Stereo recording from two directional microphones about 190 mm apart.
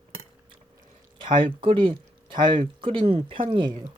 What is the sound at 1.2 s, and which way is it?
Speech, 25° right (ahead or behind).